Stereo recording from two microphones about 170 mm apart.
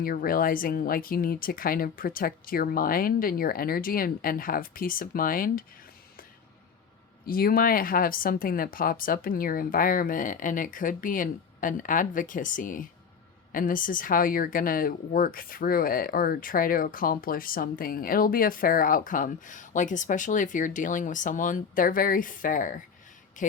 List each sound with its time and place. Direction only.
0.0 s speech: 60° left (ahead or behind)
7.3 s a woman's voice: 60° left (ahead or behind)